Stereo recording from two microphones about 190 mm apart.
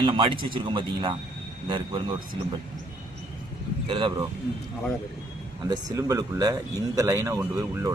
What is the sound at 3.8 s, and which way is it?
Speech, 25° right (ahead or behind).